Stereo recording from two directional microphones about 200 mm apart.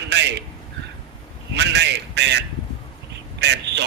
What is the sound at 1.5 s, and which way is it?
Speech, 60° right (ahead or behind).